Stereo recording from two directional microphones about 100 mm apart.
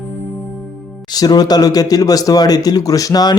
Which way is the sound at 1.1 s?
40° left (ahead or behind).